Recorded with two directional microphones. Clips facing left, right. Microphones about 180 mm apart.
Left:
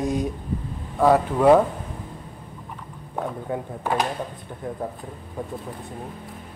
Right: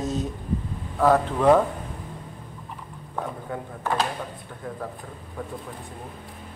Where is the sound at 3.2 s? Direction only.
20° left (ahead or behind).